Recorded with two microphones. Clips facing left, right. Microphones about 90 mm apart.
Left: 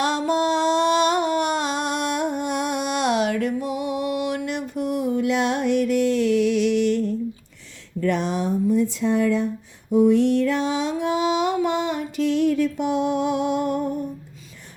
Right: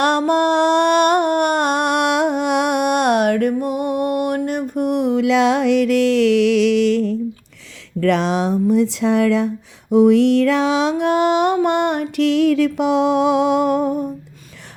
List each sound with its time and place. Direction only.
0.0 s music: 60° right (ahead or behind); by 7.2 s 90° right
8.0 s speech: 90° right
9.9 s mantra: 85° right